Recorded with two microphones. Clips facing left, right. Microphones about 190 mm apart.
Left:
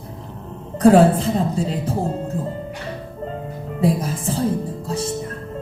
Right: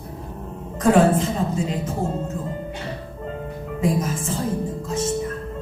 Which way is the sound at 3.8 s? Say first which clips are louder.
Left 2 dB; 35° left (ahead or behind).